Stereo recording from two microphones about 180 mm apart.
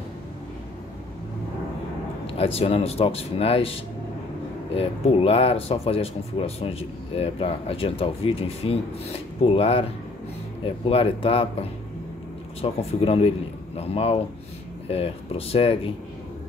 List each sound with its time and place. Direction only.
2.2 s speech: 35° left (ahead or behind)
12.6 s speech: 35° left (ahead or behind)